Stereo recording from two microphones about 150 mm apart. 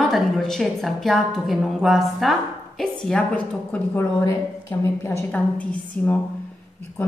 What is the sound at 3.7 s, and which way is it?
A woman's voice, 15° left (ahead or behind).